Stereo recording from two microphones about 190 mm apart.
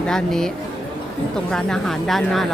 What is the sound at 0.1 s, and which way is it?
Speech, centre (ahead or behind).